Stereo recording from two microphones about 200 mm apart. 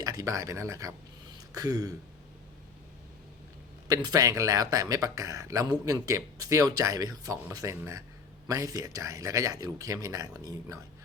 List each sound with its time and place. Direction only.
0.0 s speech: 15° right (ahead or behind)
3.8 s speech: 20° right (ahead or behind)